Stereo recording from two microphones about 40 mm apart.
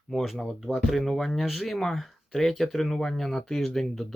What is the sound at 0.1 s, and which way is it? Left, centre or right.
Speech, centre.